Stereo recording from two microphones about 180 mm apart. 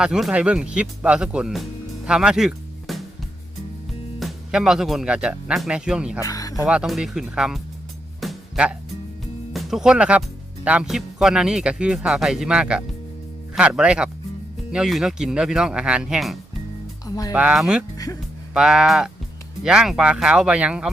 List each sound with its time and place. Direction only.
0.0 s speech: 5° right (ahead or behind)
2.0 s music: 5° right (ahead or behind)
4.2 s speech: 5° right (ahead or behind)
6.2 s speech: 20° left (ahead or behind)
6.7 s speech: 5° right (ahead or behind)
8.2 s music: centre (ahead or behind)
9.5 s speech: centre (ahead or behind)
17.1 s speech: 20° left (ahead or behind)
17.3 s speech: 5° right (ahead or behind)
17.9 s music: 20° left (ahead or behind)
18.5 s speech: 5° right (ahead or behind)